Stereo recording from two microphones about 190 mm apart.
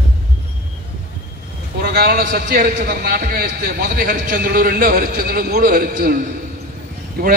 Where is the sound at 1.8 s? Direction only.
55° right (ahead or behind).